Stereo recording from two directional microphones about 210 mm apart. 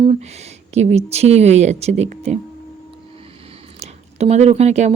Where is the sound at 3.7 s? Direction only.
30° right (ahead or behind).